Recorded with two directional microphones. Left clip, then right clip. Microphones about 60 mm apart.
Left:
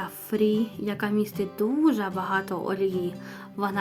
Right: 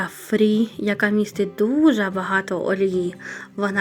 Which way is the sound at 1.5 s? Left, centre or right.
Right.